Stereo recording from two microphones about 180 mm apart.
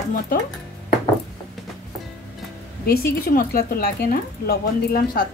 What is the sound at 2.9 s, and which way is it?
A woman's voice, 55° left (ahead or behind).